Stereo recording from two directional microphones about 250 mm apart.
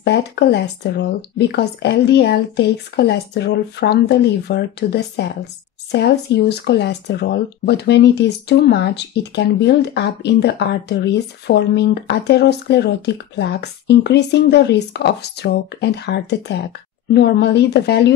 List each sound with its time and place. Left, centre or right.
0.0 s speech: left